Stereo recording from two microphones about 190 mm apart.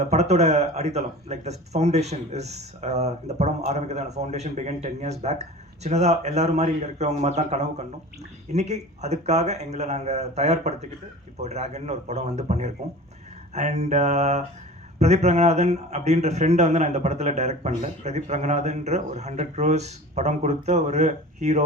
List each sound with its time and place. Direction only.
0.0 s speech: 35° right (ahead or behind)